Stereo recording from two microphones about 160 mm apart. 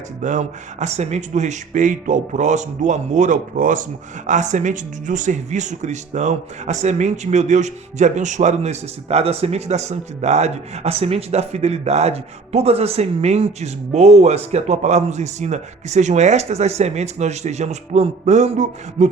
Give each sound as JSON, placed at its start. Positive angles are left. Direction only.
{"t": 0.2, "sound": "speech", "side_deg": -50}